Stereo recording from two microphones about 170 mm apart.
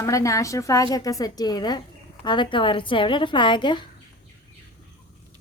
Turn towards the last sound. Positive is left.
turn(degrees=25)  # may be behind; listen again after turning